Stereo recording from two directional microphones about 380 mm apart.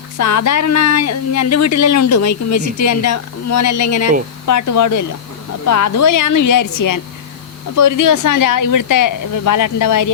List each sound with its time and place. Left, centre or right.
0.2 s speech: left